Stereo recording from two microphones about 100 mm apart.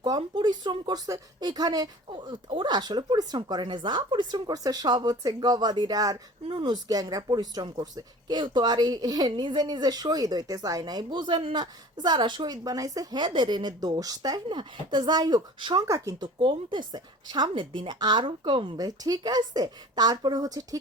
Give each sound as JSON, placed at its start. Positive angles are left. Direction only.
{"t": 0.2, "sound": "speech", "side_deg": -50}
{"t": 2.0, "sound": "speech", "side_deg": -50}
{"t": 6.5, "sound": "speech", "side_deg": -55}
{"t": 14.4, "sound": "speech", "side_deg": -55}
{"t": 18.8, "sound": "a woman's voice", "side_deg": -40}